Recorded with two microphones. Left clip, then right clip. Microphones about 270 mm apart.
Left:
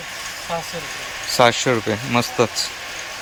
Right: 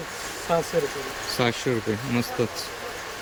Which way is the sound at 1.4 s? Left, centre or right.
Centre.